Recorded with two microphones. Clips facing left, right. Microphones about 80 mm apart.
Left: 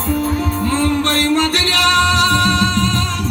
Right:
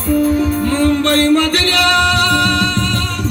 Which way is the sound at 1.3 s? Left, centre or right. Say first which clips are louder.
Right 3 dB; centre.